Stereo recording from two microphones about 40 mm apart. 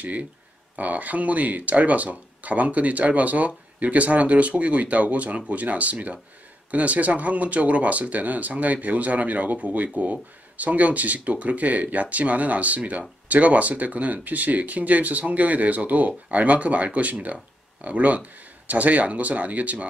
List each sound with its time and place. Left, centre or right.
0.0 s speech: right